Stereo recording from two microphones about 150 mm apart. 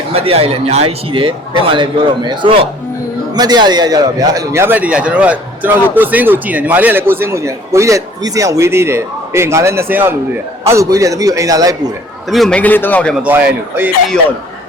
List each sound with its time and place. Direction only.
0.1 s a man's voice: 40° right (ahead or behind); by 11.8 s 25° right (ahead or behind)
12.3 s speech: 5° left (ahead or behind)
13.2 s a man's voice: 10° right (ahead or behind)